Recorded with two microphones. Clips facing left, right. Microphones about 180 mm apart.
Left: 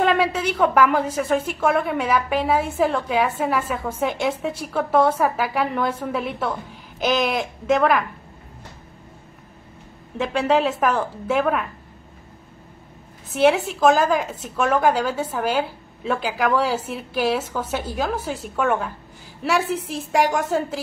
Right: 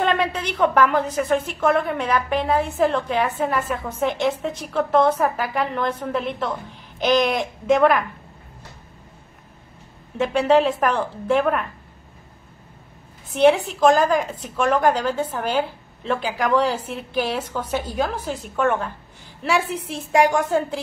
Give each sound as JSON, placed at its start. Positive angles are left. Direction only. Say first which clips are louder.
{"t": 0.0, "sound": "a woman's voice", "louder": "left 2 dB", "side_deg": 5}
{"t": 10.1, "sound": "a woman's voice", "louder": "right 3 dB", "side_deg": 0}
{"t": 13.3, "sound": "a woman's voice", "louder": "right 2 dB", "side_deg": 0}